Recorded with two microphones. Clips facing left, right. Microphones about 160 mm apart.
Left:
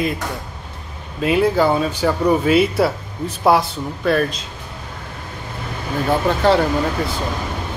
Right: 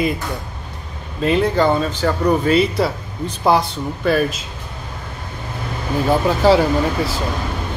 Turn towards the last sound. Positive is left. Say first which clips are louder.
# right 1 dB
turn(degrees=-5)  # may be behind; listen again after turning